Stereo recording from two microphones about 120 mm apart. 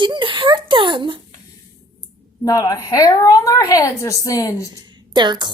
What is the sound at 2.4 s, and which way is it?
A woman's voice, 30° left (ahead or behind).